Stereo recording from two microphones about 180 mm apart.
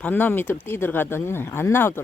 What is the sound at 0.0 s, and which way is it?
Speech, 10° left (ahead or behind).